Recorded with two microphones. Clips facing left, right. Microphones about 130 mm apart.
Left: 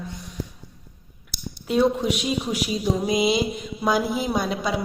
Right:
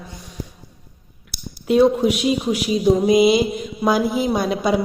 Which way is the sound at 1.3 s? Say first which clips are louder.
Right 6 dB; 10° right (ahead or behind).